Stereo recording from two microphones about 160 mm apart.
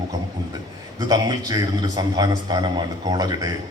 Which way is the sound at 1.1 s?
25° right (ahead or behind).